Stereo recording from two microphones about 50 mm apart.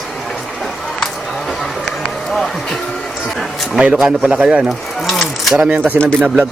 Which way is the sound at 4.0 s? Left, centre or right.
Centre.